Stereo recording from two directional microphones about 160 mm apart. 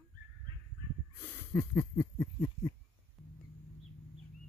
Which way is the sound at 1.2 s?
15° left (ahead or behind).